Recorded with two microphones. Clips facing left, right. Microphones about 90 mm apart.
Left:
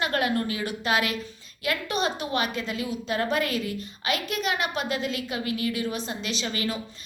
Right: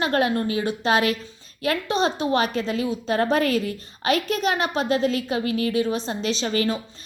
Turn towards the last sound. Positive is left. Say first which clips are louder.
# right 7 dB
turn(degrees=-35)  # may be behind; listen again after turning